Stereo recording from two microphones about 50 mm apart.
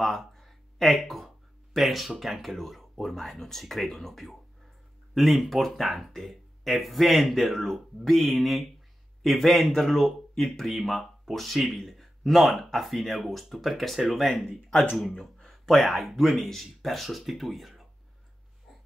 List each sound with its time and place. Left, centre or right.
0.0 s speech: centre
15.1 s a sound: centre
15.5 s speech: centre